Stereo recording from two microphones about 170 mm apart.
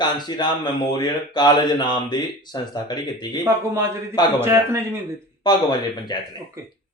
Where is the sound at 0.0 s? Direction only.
25° left (ahead or behind).